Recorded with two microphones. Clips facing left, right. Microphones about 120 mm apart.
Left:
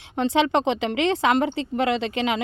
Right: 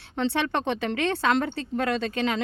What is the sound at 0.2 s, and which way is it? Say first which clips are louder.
A woman's voice: left 5 dB; 15° left (ahead or behind).